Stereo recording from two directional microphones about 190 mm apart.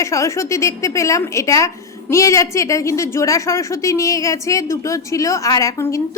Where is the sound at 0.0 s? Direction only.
15° left (ahead or behind).